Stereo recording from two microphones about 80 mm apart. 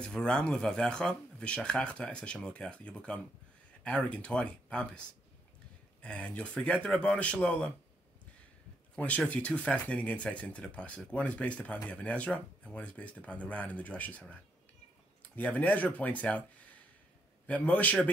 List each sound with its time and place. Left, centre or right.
0.0 s speech: centre
8.9 s speech: centre